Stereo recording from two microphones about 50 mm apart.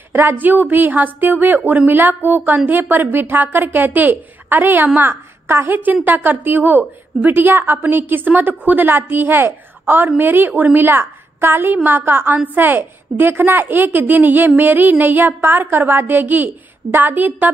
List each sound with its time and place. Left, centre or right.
0.1 s a woman's voice: right
0.4 s a woman's voice: right
4.9 s a woman's voice: right
5.7 s a woman's voice: right
10.9 s a woman's voice: right
11.7 s a woman's voice: right